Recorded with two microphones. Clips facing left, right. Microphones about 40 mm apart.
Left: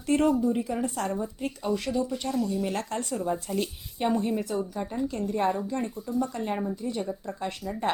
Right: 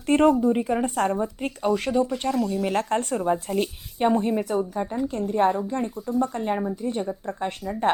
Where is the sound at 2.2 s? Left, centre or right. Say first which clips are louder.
Right 4 dB; right.